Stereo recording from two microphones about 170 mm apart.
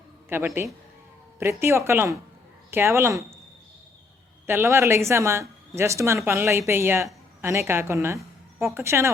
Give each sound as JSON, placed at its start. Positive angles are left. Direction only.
{"t": 0.3, "sound": "speech", "side_deg": -15}
{"t": 4.4, "sound": "speech", "side_deg": -15}